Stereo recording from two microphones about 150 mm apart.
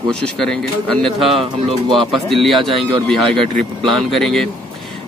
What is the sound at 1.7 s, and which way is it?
Speech, 35° right (ahead or behind).